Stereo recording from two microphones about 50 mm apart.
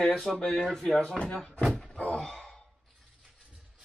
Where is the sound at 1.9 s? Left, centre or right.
Left.